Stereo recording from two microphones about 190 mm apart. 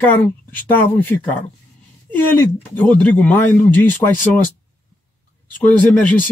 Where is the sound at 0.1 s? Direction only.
10° left (ahead or behind).